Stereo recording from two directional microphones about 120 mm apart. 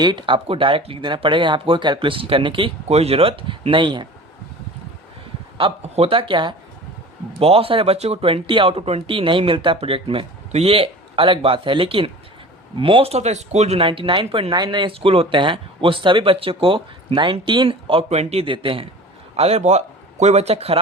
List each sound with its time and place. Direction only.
0.0 s speech: 40° right (ahead or behind)
2.8 s speech: 60° right (ahead or behind); by 4.0 s 40° right (ahead or behind)
5.5 s speech: 50° right (ahead or behind)
7.3 s speech: 55° right (ahead or behind)
19.4 s a man's voice: 60° right (ahead or behind)